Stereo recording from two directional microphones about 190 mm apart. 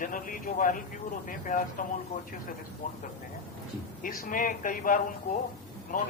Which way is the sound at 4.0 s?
45° left (ahead or behind).